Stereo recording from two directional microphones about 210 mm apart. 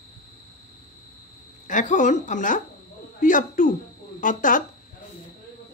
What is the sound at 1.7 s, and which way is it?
Speech, 35° left (ahead or behind).